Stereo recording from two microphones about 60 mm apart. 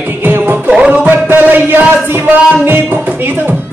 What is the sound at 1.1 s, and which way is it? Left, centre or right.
Music, right.